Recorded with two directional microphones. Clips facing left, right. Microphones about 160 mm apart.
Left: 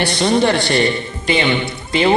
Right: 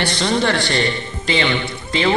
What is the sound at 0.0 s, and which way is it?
Speech, 15° left (ahead or behind).